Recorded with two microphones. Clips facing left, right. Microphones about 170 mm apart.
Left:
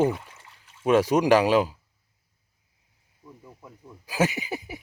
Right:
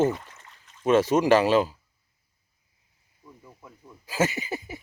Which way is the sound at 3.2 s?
5° left (ahead or behind).